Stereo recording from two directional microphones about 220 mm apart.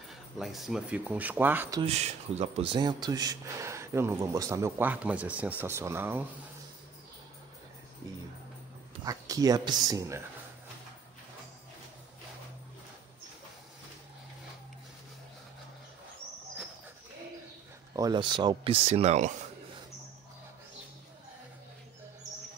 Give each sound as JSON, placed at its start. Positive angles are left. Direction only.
{"t": 0.1, "sound": "speech", "side_deg": 0}
{"t": 1.8, "sound": "speech", "side_deg": -30}
{"t": 9.0, "sound": "speech", "side_deg": -15}
{"t": 17.9, "sound": "speech", "side_deg": -20}